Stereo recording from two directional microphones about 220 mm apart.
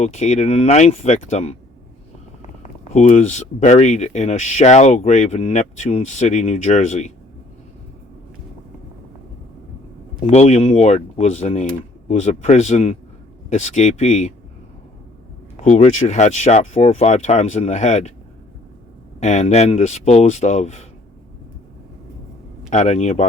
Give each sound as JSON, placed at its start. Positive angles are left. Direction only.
{"t": 0.0, "sound": "speech", "side_deg": 30}
{"t": 2.9, "sound": "speech", "side_deg": 30}
{"t": 10.2, "sound": "speech", "side_deg": 30}
{"t": 15.5, "sound": "speech", "side_deg": 30}
{"t": 19.2, "sound": "speech", "side_deg": 30}
{"t": 22.7, "sound": "speech", "side_deg": 30}